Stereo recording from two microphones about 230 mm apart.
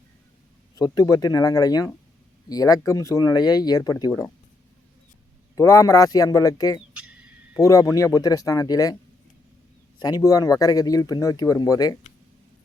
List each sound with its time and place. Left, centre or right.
0.8 s speech: centre
5.5 s speech: centre
10.0 s speech: centre